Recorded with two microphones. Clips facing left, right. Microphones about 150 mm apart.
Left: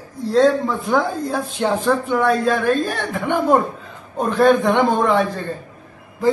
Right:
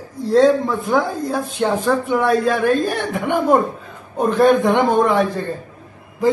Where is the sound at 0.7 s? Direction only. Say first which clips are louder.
Right 1 dB; centre (ahead or behind).